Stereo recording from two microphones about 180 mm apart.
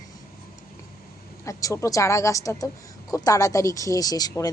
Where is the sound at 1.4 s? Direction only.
20° left (ahead or behind).